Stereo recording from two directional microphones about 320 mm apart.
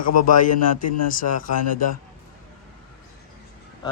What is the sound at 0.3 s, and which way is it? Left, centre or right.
Speech, left.